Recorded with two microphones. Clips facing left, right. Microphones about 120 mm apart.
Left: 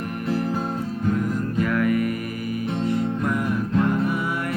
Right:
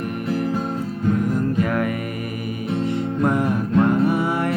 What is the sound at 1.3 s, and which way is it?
Music, 25° right (ahead or behind).